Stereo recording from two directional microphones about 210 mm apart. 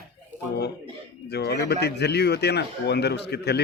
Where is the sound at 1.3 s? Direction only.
50° left (ahead or behind).